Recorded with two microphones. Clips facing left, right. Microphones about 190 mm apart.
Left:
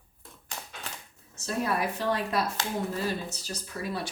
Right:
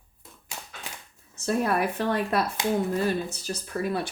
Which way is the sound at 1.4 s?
55° right (ahead or behind).